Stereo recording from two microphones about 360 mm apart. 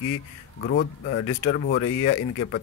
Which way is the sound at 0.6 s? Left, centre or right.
Left.